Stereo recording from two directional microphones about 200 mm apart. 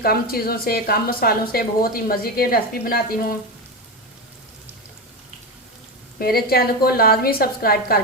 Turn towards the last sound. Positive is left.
turn(degrees=50)  # may be behind; listen again after turning